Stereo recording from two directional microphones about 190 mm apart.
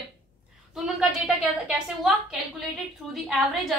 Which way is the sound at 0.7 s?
Centre (ahead or behind).